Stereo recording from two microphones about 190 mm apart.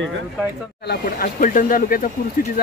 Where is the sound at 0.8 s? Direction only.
55° left (ahead or behind).